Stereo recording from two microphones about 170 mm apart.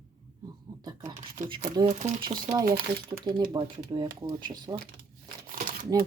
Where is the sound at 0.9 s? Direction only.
25° right (ahead or behind).